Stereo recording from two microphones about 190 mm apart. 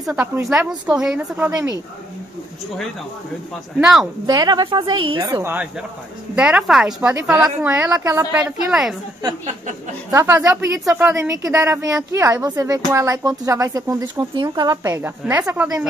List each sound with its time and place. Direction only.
0.0 s a woman's voice: 10° right (ahead or behind)
3.8 s a woman's voice: centre (ahead or behind)
4.3 s a woman's voice: 20° right (ahead or behind)
5.4 s a woman's voice: 10° right (ahead or behind)
10.1 s a woman's voice: 15° right (ahead or behind)